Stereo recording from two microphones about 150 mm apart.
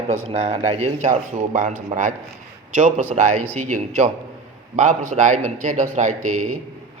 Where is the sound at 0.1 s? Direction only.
45° right (ahead or behind).